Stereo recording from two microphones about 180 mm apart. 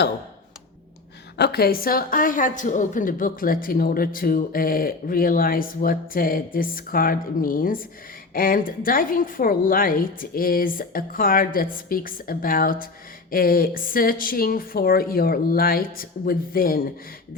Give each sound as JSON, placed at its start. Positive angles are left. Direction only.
{"t": 1.4, "sound": "a woman's voice", "side_deg": 60}